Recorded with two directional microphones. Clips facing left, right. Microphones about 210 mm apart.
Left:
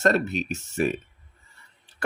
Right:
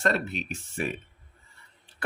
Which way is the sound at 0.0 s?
40° left (ahead or behind).